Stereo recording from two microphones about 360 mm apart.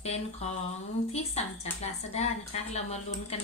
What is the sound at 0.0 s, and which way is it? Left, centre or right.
A woman's voice, centre.